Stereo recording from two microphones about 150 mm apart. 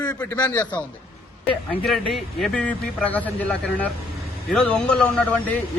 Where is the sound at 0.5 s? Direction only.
10° left (ahead or behind).